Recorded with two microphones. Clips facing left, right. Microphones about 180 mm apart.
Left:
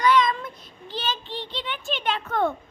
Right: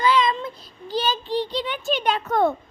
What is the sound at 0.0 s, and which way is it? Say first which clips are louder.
Child singing: even; 30° right (ahead or behind).